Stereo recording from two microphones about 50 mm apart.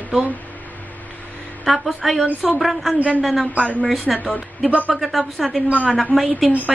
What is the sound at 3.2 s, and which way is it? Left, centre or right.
A woman's voice, centre.